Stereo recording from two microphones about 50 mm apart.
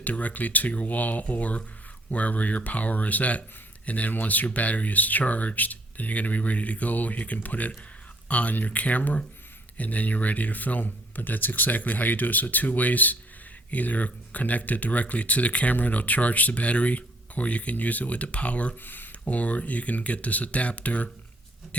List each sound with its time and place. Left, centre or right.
0.0 s speech: left